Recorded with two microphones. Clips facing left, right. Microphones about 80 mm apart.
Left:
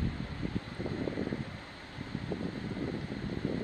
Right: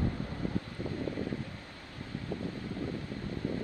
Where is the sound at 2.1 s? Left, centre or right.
Left.